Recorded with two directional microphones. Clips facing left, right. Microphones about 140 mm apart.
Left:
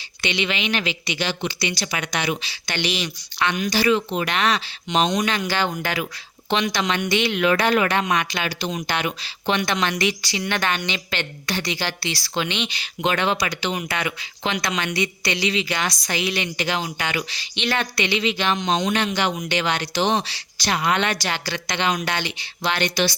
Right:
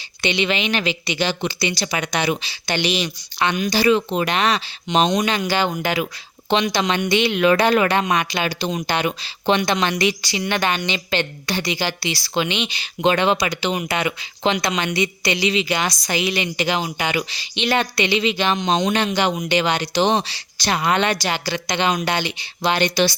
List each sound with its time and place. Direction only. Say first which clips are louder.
0.2 s a woman's voice: right 4 dB; 30° right (ahead or behind); by 12.8 s 15° right (ahead or behind)
12.8 s speech: right 5 dB; 25° right (ahead or behind)
21.1 s a woman's voice: right 4 dB; 15° right (ahead or behind)